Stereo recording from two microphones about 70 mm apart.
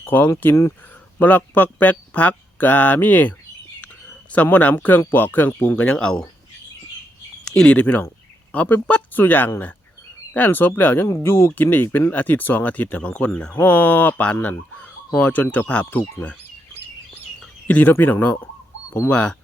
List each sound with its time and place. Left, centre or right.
0.0 s speech: left
4.7 s speech: left; by 6.2 s centre
7.5 s speech: centre
7.8 s speech: centre
14.4 s chicken: left
15.5 s speech: centre
17.4 s bird: left
17.9 s speech: left